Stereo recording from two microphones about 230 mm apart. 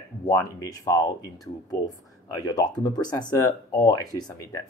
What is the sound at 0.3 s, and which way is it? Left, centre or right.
Speech, centre.